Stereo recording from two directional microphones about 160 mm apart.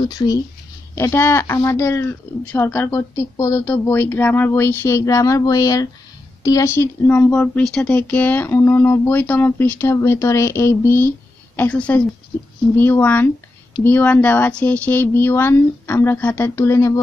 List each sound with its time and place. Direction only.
0.9 s speech: 15° left (ahead or behind)